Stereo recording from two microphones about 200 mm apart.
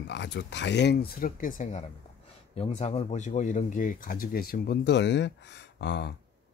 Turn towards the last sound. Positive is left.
turn(degrees=60)  # may be behind; listen again after turning